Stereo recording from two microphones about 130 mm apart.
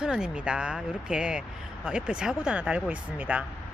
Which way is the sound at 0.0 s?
5° right (ahead or behind).